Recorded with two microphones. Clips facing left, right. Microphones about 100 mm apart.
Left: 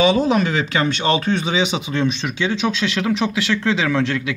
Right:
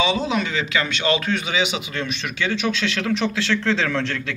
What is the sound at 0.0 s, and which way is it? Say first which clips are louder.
Speech: left 6 dB; 45° left (ahead or behind).